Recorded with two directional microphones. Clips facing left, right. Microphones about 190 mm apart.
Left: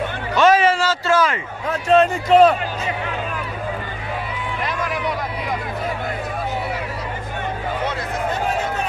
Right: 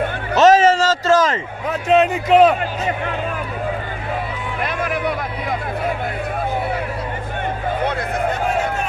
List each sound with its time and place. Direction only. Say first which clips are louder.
0.4 s a sound: right 3 dB; 40° right (ahead or behind)
1.7 s a man's voice: even; 5° right (ahead or behind)
4.6 s vehicle: right 3 dB; 55° right (ahead or behind)